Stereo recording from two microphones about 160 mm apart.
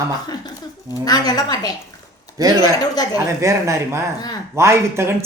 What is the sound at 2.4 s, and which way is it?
Speech, 25° right (ahead or behind).